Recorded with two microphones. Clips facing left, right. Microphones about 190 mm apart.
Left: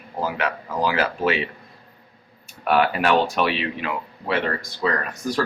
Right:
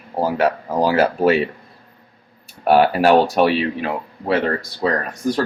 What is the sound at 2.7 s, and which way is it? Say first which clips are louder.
Speech: right 6 dB; 35° right (ahead or behind).